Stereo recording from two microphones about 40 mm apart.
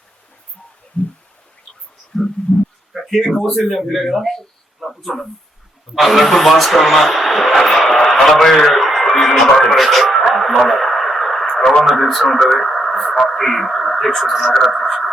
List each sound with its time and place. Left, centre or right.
2.1 s speech: centre
2.9 s a sound: right
3.4 s a man's voice: centre
5.9 s a sound: centre
8.1 s a man's voice: centre
8.6 s radio: centre
9.3 s speech: centre
10.2 s radio: centre
11.9 s a man's voice: centre